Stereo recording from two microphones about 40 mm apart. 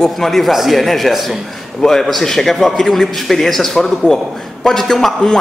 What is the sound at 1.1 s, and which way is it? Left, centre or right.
Speech, centre.